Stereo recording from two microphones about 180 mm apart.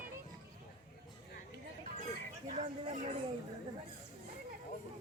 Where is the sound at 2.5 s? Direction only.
45° right (ahead or behind).